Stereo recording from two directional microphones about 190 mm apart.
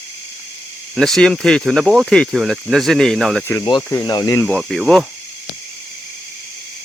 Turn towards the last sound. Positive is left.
turn(degrees=0)  # may be behind; listen again after turning